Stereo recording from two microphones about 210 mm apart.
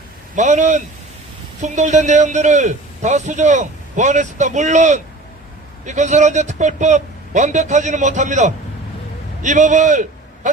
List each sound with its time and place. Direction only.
0.3 s a man's voice: 35° right (ahead or behind)